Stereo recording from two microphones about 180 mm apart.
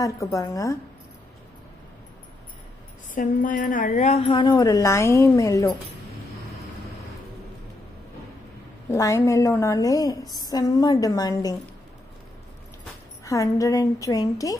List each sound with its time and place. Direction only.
0.0 s a woman's voice: 20° left (ahead or behind)
3.2 s a woman's voice: 50° left (ahead or behind); by 5.8 s 15° left (ahead or behind)
8.9 s a woman's voice: 15° left (ahead or behind)
13.2 s a woman's voice: 20° left (ahead or behind)